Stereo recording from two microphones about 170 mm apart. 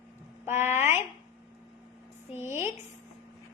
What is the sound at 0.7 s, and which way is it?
Speech, 40° left (ahead or behind).